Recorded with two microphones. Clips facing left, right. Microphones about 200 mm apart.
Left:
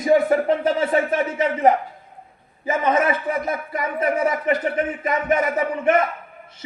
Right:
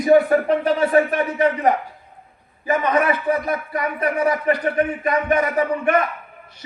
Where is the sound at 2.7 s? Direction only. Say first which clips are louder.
Right 1 dB; 20° left (ahead or behind).